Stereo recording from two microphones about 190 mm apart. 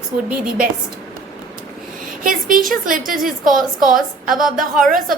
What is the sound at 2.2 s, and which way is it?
A woman's voice, 45° right (ahead or behind).